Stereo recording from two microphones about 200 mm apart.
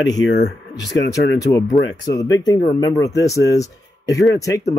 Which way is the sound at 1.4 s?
20° left (ahead or behind).